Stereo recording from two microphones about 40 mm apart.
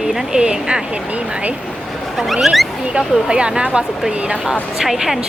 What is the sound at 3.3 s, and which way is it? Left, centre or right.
Speech, right.